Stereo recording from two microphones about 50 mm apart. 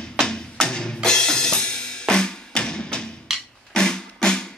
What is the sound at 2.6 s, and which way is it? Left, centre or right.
Music, centre.